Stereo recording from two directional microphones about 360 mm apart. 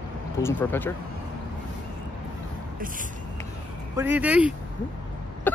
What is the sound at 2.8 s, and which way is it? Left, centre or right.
Speech, right.